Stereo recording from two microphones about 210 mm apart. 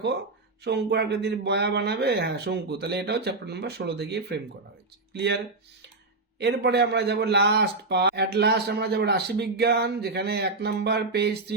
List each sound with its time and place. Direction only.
0.6 s a man's voice: 50° right (ahead or behind)
6.4 s a man's voice: 50° right (ahead or behind)